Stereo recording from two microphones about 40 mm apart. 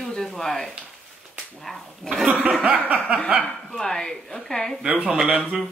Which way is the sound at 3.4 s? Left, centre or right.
Centre.